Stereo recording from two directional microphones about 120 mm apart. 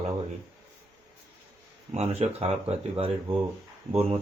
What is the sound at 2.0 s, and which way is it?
Speech, 60° right (ahead or behind).